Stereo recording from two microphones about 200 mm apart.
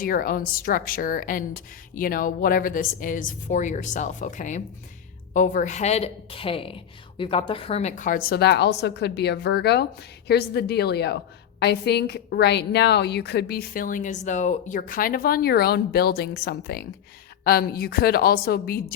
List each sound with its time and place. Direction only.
0.0 s a woman's voice: 45° left (ahead or behind)